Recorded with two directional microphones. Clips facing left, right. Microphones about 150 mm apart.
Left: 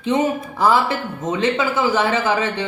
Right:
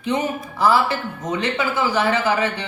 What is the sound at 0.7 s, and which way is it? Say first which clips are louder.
Speech: left 1 dB; 20° left (ahead or behind).